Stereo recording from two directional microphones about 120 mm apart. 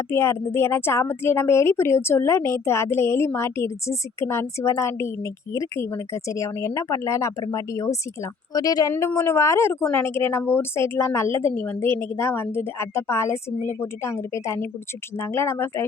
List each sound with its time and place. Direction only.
0.1 s speech: 20° left (ahead or behind)